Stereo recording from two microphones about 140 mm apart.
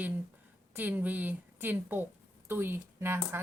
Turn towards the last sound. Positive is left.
turn(degrees=-15)  # may be behind; listen again after turning